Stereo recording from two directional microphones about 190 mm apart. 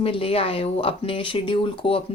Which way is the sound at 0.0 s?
30° left (ahead or behind).